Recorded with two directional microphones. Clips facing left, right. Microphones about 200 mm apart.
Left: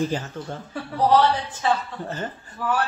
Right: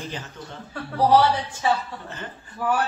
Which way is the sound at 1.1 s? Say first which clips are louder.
Even; 10° right (ahead or behind).